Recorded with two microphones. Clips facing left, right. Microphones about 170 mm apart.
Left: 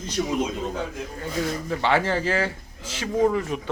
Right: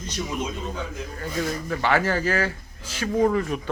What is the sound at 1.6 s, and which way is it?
Speech, 25° left (ahead or behind).